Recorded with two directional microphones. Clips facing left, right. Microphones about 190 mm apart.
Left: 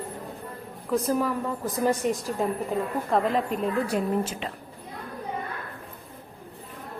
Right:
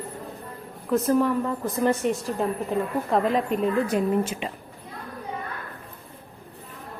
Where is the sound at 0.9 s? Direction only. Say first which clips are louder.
Right 4 dB; 5° left (ahead or behind).